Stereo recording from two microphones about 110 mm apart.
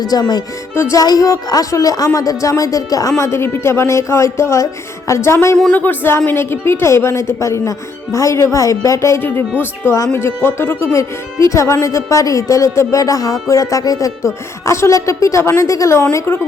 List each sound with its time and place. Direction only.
0.0 s speech: 35° left (ahead or behind)